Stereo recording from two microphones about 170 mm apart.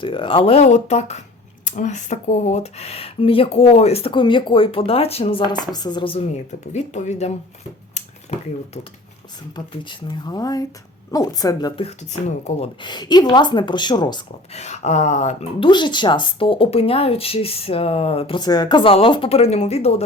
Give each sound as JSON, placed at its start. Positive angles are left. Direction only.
{"t": 0.0, "sound": "speech", "side_deg": 30}
{"t": 7.9, "sound": "a sound", "side_deg": 40}
{"t": 9.8, "sound": "speech", "side_deg": 25}
{"t": 12.5, "sound": "speech", "side_deg": 35}
{"t": 14.5, "sound": "speech", "side_deg": 40}
{"t": 15.6, "sound": "speech", "side_deg": 25}